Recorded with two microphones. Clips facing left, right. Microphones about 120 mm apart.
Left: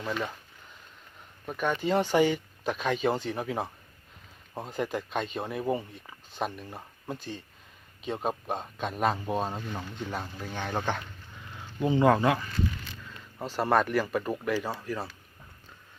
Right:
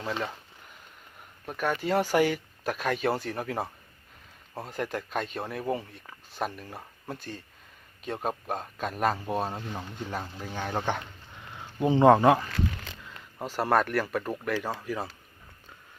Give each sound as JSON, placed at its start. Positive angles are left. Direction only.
{"t": 1.5, "sound": "speech", "side_deg": -5}
{"t": 11.5, "sound": "speech", "side_deg": -25}
{"t": 13.1, "sound": "speech", "side_deg": -10}
{"t": 14.6, "sound": "speech", "side_deg": -10}